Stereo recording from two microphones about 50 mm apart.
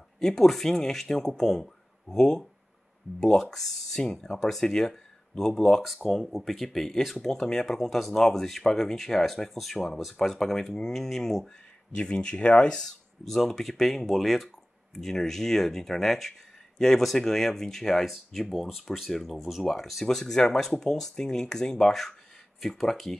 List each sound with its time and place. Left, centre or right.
0.2 s speech: centre
11.9 s speech: centre
13.2 s speech: centre